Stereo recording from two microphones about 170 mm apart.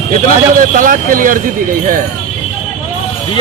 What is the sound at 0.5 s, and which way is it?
Speech, 55° right (ahead or behind).